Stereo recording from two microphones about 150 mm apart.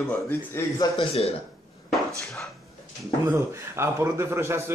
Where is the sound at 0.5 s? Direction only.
15° left (ahead or behind).